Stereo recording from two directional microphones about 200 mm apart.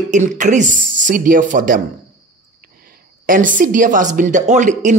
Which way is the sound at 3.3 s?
40° right (ahead or behind).